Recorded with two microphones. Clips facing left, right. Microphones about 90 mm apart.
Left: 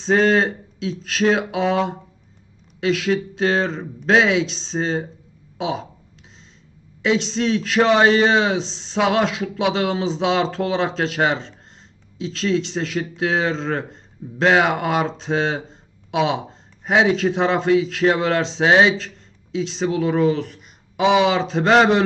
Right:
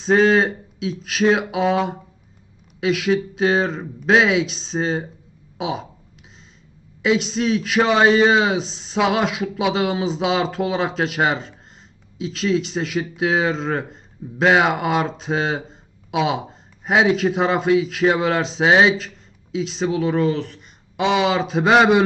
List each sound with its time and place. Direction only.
0.0 s speech: 5° right (ahead or behind)
7.0 s speech: 5° right (ahead or behind)